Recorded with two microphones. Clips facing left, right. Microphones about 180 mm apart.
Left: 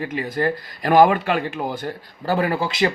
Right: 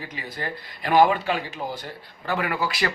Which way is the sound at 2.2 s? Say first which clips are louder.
Left 5 dB; 35° left (ahead or behind).